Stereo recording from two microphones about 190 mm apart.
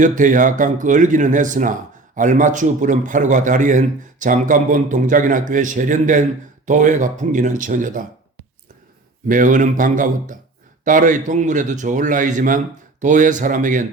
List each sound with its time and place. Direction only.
0.0 s speech: 40° right (ahead or behind)
9.2 s speech: 45° right (ahead or behind)